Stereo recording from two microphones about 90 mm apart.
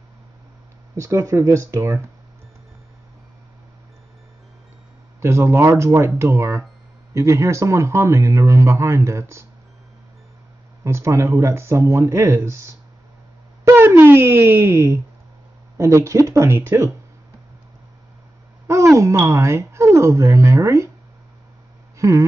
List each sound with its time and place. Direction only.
0.9 s speech: 35° right (ahead or behind)
5.2 s speech: 30° right (ahead or behind)
10.8 s speech: 30° right (ahead or behind)
18.7 s speech: 35° right (ahead or behind)
21.9 s a sound: 35° right (ahead or behind)